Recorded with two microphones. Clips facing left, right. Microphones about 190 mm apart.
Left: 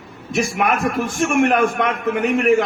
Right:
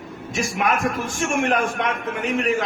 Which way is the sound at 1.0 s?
50° left (ahead or behind).